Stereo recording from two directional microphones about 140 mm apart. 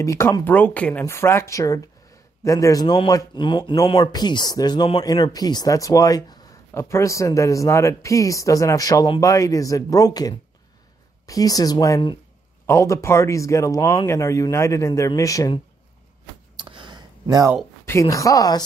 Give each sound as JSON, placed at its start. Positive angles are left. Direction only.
{"t": 0.0, "sound": "speech", "side_deg": 20}
{"t": 16.5, "sound": "a sound", "side_deg": -35}
{"t": 17.8, "sound": "speech", "side_deg": 20}